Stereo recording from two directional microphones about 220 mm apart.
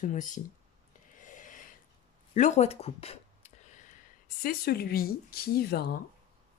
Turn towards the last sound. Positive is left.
turn(degrees=45)  # may be behind; listen again after turning